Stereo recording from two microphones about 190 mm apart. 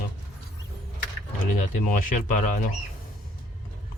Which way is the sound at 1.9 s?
45° left (ahead or behind).